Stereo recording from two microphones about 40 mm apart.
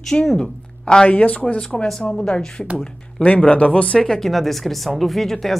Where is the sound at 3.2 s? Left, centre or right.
Left.